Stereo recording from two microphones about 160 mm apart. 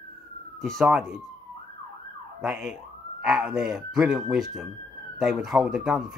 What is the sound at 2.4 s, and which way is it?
Speech, centre (ahead or behind).